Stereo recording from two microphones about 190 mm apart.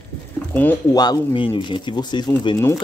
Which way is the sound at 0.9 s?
20° left (ahead or behind).